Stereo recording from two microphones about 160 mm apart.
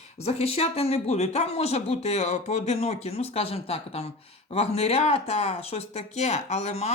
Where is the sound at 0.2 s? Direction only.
40° left (ahead or behind).